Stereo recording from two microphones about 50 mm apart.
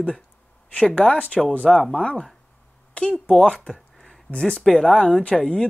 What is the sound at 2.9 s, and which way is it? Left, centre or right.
Speech, centre.